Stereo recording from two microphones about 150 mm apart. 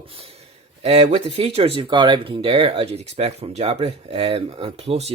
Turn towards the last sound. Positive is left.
turn(degrees=-40)  # may be behind; listen again after turning